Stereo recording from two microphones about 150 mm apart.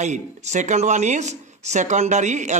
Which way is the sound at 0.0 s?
50° right (ahead or behind).